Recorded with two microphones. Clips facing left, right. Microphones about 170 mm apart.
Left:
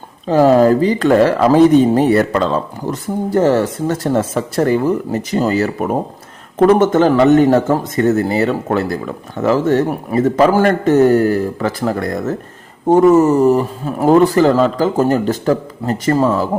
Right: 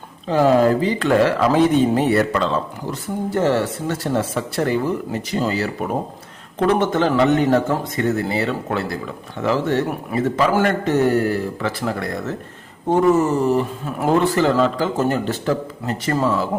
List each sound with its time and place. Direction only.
0.3 s a man's voice: 40° left (ahead or behind)